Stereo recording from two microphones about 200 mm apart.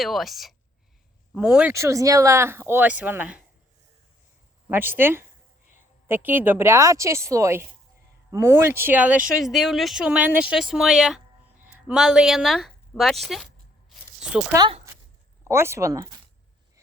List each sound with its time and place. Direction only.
0.0 s a woman's voice: centre (ahead or behind)
4.7 s speech: 10° right (ahead or behind)
14.5 s speech: 20° right (ahead or behind)